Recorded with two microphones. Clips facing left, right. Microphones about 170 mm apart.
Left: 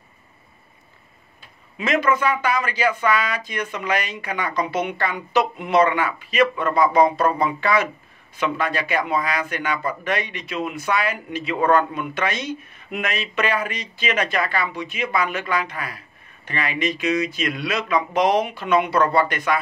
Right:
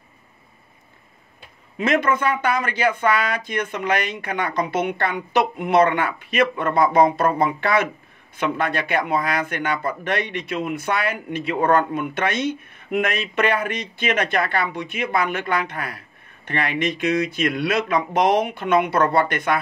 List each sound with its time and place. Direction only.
1.8 s speech: 55° right (ahead or behind)